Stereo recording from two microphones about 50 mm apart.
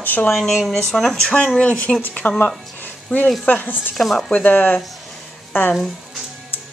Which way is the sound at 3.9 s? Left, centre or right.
Centre.